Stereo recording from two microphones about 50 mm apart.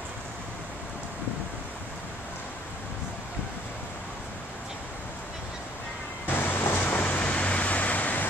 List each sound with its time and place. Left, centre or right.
6.3 s waves: left
6.8 s vehicle: left